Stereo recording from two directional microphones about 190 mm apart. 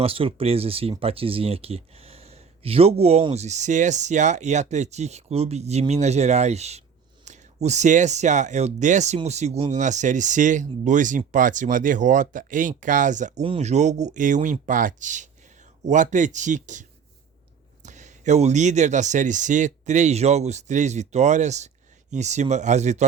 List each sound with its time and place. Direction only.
0.0 s speech: 30° right (ahead or behind)
17.8 s speech: 40° right (ahead or behind)